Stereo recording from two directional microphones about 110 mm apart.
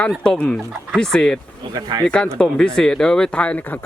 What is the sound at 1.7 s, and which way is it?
Speech, 35° right (ahead or behind).